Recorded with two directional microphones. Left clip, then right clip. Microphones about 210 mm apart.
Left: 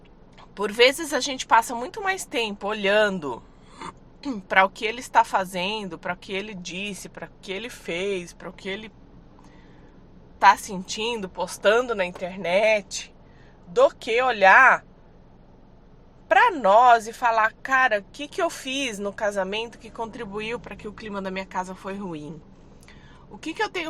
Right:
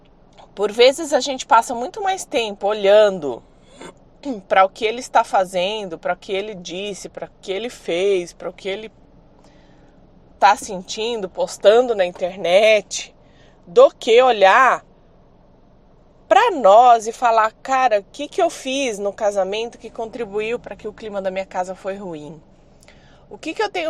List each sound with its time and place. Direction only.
0.3 s a woman's voice: 15° right (ahead or behind)
10.4 s a woman's voice: 20° right (ahead or behind)
16.3 s a woman's voice: 25° right (ahead or behind)
23.4 s a woman's voice: 20° right (ahead or behind)